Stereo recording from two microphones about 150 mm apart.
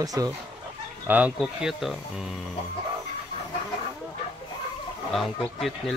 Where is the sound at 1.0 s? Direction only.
10° right (ahead or behind).